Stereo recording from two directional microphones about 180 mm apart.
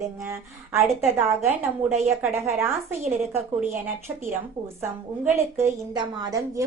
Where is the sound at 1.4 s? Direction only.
40° right (ahead or behind).